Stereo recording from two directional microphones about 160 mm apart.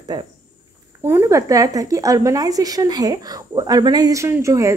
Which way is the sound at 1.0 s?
15° right (ahead or behind).